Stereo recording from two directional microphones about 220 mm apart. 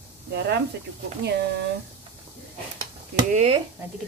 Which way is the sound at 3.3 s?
30° right (ahead or behind).